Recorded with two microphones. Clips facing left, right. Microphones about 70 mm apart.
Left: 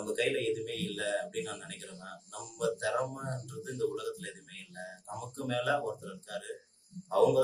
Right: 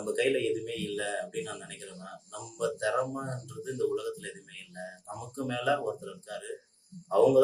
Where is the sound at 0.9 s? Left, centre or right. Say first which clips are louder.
Left 1 dB; right.